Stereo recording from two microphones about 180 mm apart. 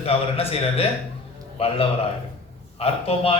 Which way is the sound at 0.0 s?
35° left (ahead or behind).